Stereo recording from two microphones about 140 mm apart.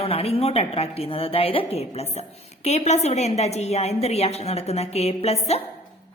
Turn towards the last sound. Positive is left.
turn(degrees=50)  # may be behind; listen again after turning